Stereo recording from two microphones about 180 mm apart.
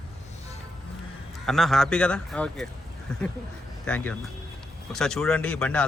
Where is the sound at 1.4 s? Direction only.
Centre (ahead or behind).